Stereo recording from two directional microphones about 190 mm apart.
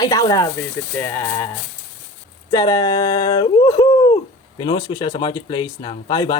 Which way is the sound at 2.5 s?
20° left (ahead or behind).